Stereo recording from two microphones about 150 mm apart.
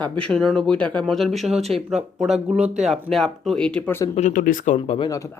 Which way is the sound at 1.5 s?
45° right (ahead or behind).